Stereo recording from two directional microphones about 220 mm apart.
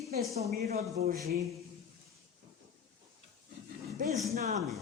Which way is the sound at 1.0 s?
45° right (ahead or behind).